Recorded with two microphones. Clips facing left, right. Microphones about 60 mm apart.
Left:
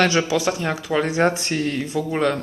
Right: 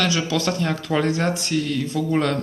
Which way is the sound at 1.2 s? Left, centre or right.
Left.